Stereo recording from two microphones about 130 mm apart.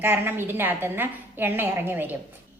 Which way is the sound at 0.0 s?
15° right (ahead or behind).